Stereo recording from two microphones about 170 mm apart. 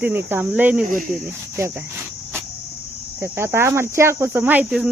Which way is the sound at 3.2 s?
15° right (ahead or behind).